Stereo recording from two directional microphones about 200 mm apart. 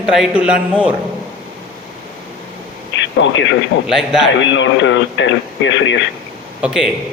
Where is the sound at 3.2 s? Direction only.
65° left (ahead or behind).